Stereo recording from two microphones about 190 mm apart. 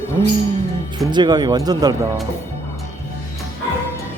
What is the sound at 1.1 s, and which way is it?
Speech, 25° right (ahead or behind).